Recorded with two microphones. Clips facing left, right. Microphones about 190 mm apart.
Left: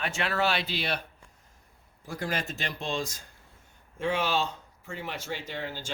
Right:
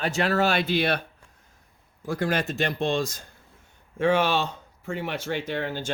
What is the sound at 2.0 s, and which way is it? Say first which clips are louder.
Speech: right 7 dB; 65° right (ahead or behind).